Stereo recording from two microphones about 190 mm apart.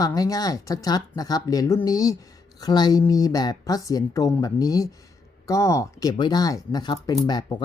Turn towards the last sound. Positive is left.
turn(degrees=20)  # may be behind; listen again after turning